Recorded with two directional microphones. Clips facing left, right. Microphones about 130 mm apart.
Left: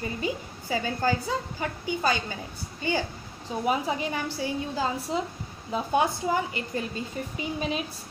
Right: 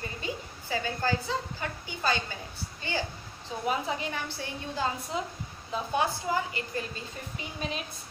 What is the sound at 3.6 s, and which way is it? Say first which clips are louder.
A woman's voice: left 3 dB; 10° left (ahead or behind).